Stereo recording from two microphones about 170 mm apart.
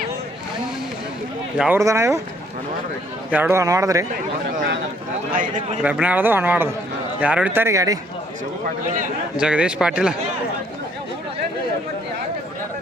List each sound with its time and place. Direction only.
1.5 s speech: 5° right (ahead or behind)
1.8 s a man's voice: 15° right (ahead or behind)
3.2 s a man's voice: 10° right (ahead or behind)
5.3 s a man's voice: 50° right (ahead or behind)
5.8 s a man's voice: 10° right (ahead or behind)
9.4 s speech: 5° right (ahead or behind)